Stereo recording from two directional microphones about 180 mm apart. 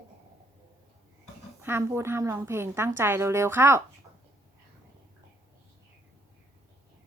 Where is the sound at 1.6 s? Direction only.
15° right (ahead or behind).